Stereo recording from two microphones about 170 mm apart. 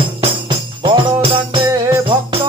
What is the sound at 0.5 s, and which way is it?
Music, 30° right (ahead or behind).